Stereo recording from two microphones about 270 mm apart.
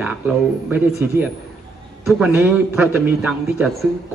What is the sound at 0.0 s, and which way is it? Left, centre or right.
A man's voice, centre.